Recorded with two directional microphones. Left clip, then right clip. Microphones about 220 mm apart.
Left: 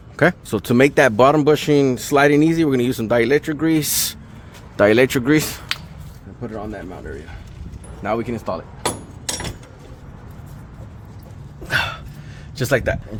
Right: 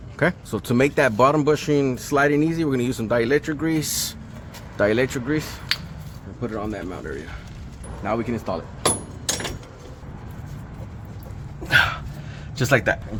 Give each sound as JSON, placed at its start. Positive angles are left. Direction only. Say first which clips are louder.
{"t": 0.2, "sound": "speech", "louder": "left 5 dB", "side_deg": 30}
{"t": 5.2, "sound": "speech", "louder": "left 8 dB", "side_deg": 55}
{"t": 6.4, "sound": "speech", "louder": "right 1 dB", "side_deg": 20}
{"t": 8.0, "sound": "speech", "louder": "left 3 dB", "side_deg": 45}
{"t": 11.7, "sound": "dog", "louder": "right 3 dB", "side_deg": 25}
{"t": 12.5, "sound": "speech", "louder": "even", "side_deg": 25}